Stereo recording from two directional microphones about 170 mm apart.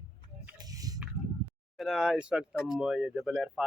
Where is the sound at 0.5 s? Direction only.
20° right (ahead or behind).